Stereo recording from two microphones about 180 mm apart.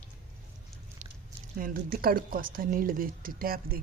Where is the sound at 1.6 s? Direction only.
50° right (ahead or behind).